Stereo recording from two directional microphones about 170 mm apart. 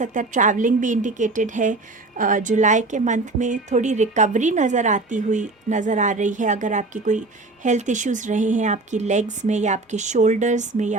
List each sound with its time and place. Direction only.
0.0 s a woman's voice: 50° right (ahead or behind)